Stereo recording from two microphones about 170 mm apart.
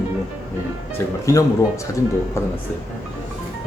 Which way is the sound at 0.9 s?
15° left (ahead or behind).